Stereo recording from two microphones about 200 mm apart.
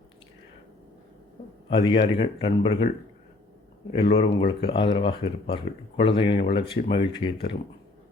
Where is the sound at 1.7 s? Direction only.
25° left (ahead or behind).